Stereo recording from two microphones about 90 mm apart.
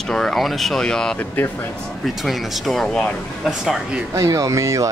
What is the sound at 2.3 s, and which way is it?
Speech, centre (ahead or behind).